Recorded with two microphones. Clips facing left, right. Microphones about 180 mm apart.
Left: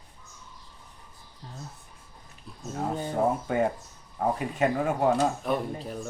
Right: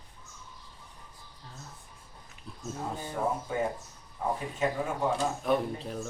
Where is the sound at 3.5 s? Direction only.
65° left (ahead or behind).